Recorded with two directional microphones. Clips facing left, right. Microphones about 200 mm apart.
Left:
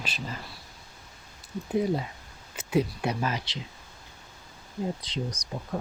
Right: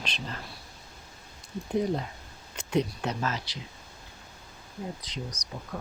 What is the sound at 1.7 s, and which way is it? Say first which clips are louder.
Speech: left 1 dB; 5° left (ahead or behind).